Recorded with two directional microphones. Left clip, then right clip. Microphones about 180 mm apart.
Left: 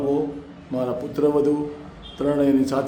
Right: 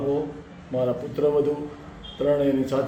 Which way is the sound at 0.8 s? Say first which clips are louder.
Left 1 dB; 25° left (ahead or behind).